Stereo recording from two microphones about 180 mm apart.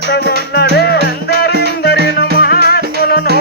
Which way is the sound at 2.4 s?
60° left (ahead or behind).